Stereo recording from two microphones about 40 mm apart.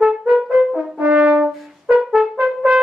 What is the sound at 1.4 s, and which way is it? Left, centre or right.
Brass instrument, right.